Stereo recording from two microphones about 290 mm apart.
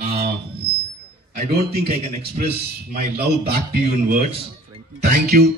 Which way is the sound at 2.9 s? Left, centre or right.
Right.